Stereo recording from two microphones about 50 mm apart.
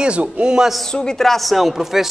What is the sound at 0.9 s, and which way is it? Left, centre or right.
A man's voice, centre.